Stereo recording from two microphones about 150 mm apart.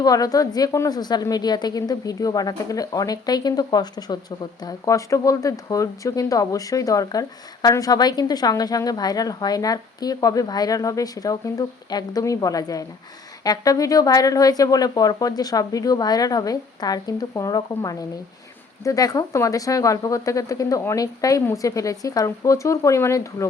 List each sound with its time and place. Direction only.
0.0 s speech: 25° left (ahead or behind)